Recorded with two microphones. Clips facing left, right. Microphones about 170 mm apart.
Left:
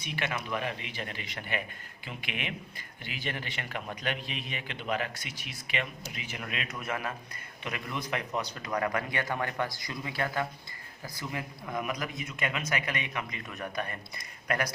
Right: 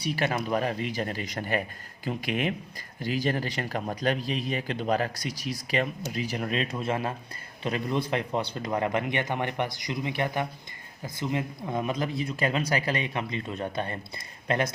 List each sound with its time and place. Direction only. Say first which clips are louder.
0.0 s a man's voice: right 7 dB; 35° right (ahead or behind)